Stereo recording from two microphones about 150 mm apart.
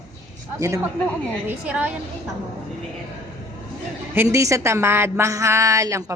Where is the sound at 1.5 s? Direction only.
10° right (ahead or behind).